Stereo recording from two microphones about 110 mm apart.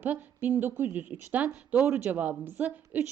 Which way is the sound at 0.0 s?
15° right (ahead or behind).